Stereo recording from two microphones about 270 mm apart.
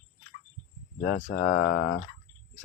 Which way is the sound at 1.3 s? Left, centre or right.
Left.